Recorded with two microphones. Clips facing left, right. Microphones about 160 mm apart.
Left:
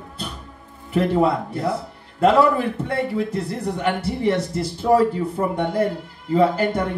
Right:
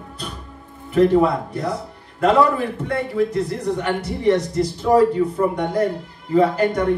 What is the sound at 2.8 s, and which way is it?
A man's voice, 30° left (ahead or behind).